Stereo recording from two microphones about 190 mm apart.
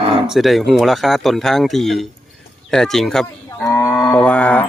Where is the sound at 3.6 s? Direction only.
15° left (ahead or behind).